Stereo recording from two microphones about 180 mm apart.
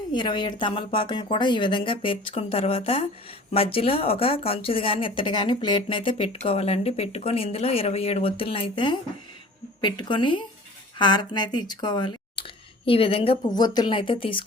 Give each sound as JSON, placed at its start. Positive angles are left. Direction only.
{"t": 0.1, "sound": "speech", "side_deg": 25}